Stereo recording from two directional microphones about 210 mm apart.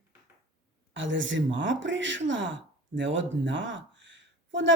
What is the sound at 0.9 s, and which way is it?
Speech, 60° right (ahead or behind).